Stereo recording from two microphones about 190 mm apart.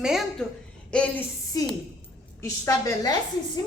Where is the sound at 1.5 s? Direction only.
20° left (ahead or behind).